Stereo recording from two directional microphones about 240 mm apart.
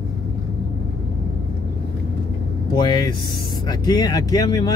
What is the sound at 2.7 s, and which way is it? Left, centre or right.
Speech, centre.